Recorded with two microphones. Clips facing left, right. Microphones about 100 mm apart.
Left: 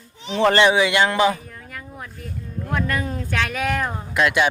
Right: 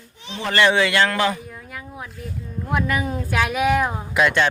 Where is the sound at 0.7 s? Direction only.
15° left (ahead or behind).